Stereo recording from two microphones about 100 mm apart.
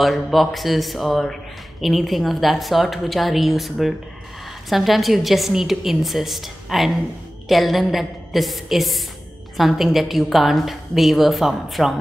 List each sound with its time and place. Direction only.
0.0 s a woman's voice: centre (ahead or behind)